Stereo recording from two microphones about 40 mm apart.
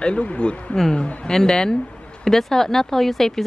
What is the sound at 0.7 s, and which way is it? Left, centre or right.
Speech, centre.